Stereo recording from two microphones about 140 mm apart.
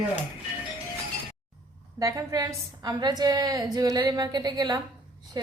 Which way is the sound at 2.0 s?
25° right (ahead or behind).